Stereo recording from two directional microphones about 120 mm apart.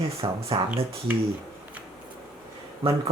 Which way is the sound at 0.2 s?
55° right (ahead or behind).